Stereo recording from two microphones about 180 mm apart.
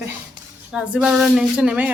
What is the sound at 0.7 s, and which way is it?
Speech, 5° right (ahead or behind).